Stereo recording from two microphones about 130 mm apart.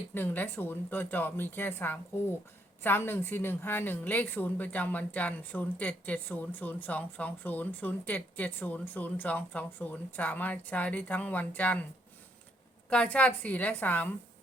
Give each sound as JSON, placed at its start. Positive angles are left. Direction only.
{"t": 0.1, "sound": "a woman's voice", "side_deg": 15}
{"t": 12.9, "sound": "a woman's voice", "side_deg": 10}